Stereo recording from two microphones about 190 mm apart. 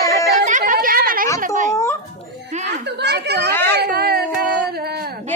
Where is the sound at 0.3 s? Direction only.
40° right (ahead or behind).